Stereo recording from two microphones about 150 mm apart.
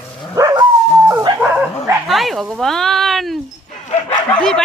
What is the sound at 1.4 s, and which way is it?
Dog, 10° right (ahead or behind).